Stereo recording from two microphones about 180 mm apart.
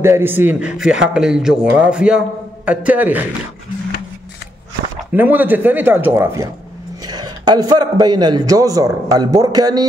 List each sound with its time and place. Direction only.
0.0 s a man's voice: 15° right (ahead or behind)
5.1 s a man's voice: 10° right (ahead or behind)